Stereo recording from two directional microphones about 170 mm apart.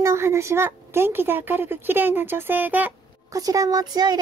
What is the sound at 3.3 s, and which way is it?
Speech, 20° right (ahead or behind).